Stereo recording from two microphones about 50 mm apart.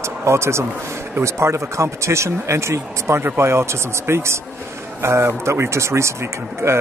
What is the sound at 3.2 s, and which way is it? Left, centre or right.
Speech, right.